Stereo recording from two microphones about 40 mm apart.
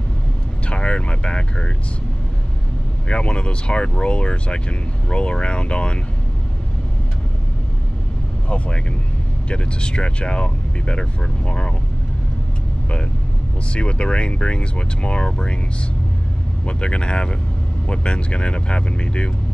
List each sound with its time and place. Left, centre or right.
0.7 s speech: left
3.1 s speech: left
8.5 s speech: left
13.7 s speech: left
16.6 s speech: left